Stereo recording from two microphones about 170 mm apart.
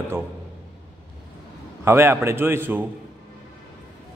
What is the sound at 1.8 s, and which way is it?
A man's voice, 15° right (ahead or behind).